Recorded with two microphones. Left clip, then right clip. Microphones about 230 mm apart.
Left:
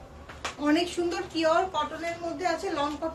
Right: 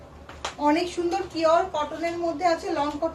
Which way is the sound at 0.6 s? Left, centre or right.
Centre.